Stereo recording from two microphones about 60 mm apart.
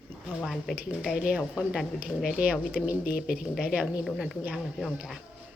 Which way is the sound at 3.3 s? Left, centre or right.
Centre.